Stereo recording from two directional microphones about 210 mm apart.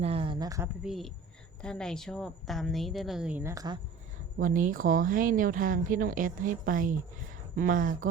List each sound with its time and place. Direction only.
0.0 s a sound: 25° right (ahead or behind)
0.9 s a woman's voice: centre (ahead or behind); by 3.8 s 15° right (ahead or behind)
4.4 s speech: 40° right (ahead or behind)